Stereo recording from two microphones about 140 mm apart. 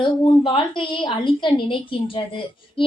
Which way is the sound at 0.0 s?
25° left (ahead or behind).